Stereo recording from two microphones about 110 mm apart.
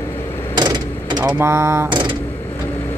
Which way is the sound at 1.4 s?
20° right (ahead or behind).